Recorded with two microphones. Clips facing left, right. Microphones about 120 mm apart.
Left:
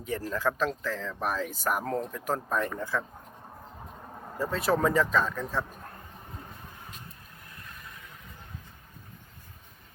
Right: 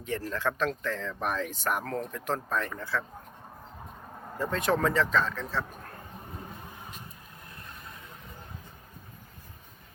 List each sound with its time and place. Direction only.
0.0 s speech: 10° left (ahead or behind)
1.8 s speech: 20° left (ahead or behind)
2.0 s speech: 10° left (ahead or behind)
4.4 s speech: 5° left (ahead or behind)